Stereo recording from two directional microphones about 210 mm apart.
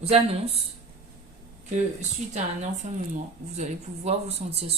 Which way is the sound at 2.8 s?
35° right (ahead or behind).